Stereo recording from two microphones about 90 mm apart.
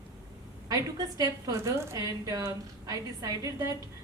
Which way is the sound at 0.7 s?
45° right (ahead or behind).